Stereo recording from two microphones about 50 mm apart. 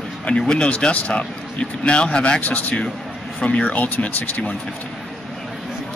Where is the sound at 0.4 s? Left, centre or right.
Centre.